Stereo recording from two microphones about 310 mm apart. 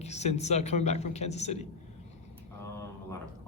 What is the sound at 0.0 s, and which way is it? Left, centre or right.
Speech, left.